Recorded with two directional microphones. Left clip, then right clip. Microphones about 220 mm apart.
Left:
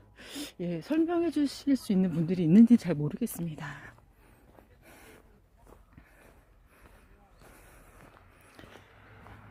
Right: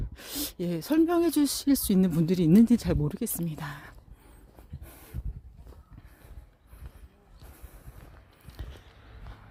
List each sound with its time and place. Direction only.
0.2 s speech: 20° right (ahead or behind)
4.9 s dog: 5° right (ahead or behind)
7.4 s vehicle: centre (ahead or behind)